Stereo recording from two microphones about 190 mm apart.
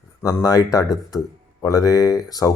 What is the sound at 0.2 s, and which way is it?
Speech, 15° left (ahead or behind).